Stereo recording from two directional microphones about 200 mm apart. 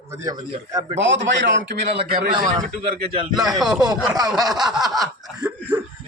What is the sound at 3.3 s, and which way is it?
A man's voice, centre (ahead or behind).